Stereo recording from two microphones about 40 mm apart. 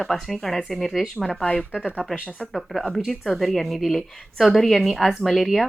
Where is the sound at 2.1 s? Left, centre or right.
Right.